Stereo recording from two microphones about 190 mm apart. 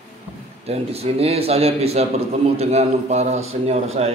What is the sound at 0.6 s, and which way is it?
Speech, 30° right (ahead or behind).